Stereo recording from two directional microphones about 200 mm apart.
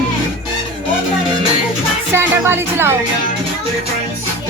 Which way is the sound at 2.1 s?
10° right (ahead or behind).